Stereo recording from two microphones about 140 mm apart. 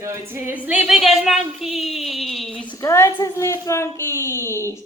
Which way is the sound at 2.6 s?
20° left (ahead or behind).